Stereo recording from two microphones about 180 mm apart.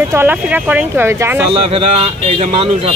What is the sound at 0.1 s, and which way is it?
Speech, 10° right (ahead or behind).